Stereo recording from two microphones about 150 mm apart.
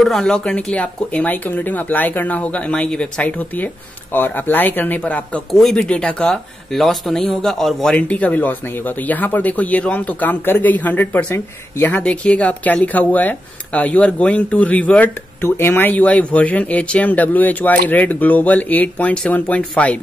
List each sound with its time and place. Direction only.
0.0 s speech: 5° left (ahead or behind)